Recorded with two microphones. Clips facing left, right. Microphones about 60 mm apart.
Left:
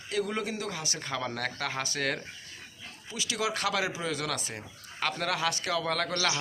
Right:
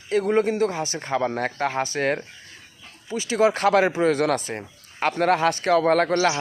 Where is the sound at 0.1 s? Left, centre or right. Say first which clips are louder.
Right 11 dB; right.